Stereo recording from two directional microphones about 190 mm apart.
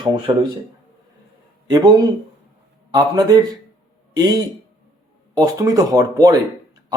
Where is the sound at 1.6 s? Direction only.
20° right (ahead or behind).